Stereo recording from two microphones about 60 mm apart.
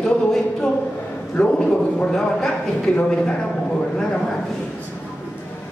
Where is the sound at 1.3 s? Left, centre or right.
Centre.